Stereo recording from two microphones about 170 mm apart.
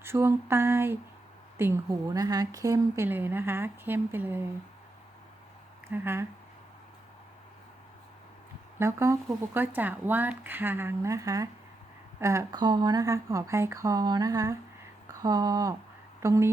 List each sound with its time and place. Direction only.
0.0 s a woman's voice: 15° right (ahead or behind)
5.9 s a woman's voice: 15° right (ahead or behind)
8.8 s a woman's voice: 15° right (ahead or behind)
15.0 s a sound: 20° right (ahead or behind)
16.2 s a woman's voice: 15° right (ahead or behind)